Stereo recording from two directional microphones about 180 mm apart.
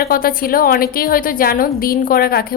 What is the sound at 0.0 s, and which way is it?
A woman's voice, 55° left (ahead or behind).